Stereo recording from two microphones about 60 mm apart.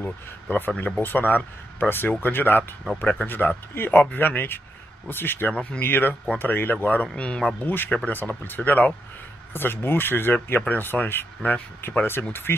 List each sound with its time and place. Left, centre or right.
0.0 s speech: left
5.5 s speech: centre
5.8 s speech: left; by 7.5 s centre
7.6 s speech: left